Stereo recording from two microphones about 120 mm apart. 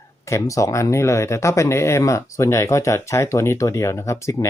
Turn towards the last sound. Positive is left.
turn(degrees=25)  # may be behind; listen again after turning